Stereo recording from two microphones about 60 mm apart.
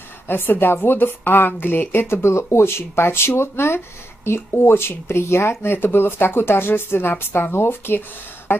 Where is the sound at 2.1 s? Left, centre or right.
Left.